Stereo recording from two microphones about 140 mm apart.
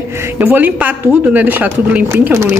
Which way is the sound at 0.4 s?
15° right (ahead or behind).